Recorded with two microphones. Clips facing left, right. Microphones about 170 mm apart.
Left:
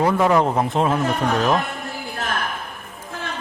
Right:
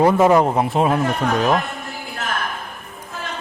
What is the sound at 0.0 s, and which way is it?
Speech, 20° right (ahead or behind).